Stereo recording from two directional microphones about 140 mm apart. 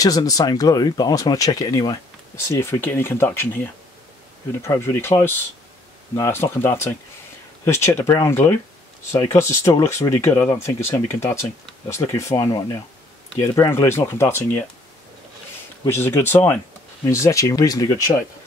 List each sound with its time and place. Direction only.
0.0 s speech: 25° left (ahead or behind)
15.8 s speech: 20° left (ahead or behind)